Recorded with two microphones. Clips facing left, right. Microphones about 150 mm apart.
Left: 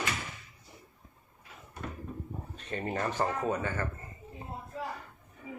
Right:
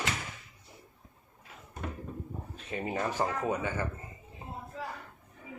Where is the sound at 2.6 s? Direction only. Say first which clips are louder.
Even; 5° right (ahead or behind).